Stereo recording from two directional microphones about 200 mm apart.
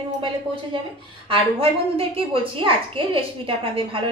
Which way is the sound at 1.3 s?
30° right (ahead or behind).